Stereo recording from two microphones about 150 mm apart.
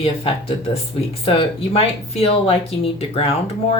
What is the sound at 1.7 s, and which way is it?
Speech, 40° left (ahead or behind).